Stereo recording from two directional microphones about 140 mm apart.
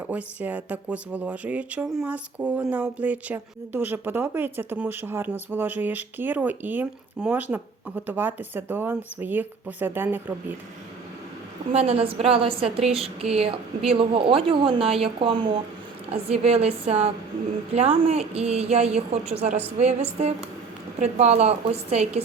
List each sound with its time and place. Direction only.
0.1 s speech: 10° right (ahead or behind)
11.7 s a woman's voice: 45° right (ahead or behind)